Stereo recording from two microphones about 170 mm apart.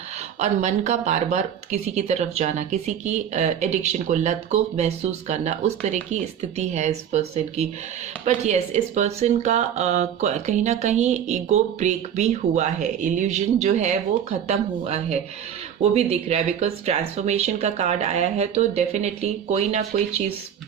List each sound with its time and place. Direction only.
0.3 s speech: 40° right (ahead or behind)